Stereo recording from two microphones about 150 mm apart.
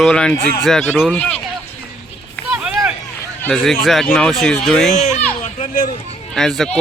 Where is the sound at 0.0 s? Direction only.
5° left (ahead or behind).